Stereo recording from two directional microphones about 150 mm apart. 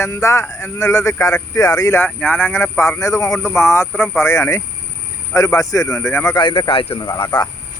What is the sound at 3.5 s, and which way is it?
Speech, 15° left (ahead or behind).